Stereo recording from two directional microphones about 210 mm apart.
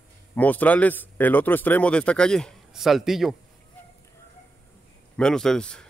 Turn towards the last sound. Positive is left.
turn(degrees=5)  # may be behind; listen again after turning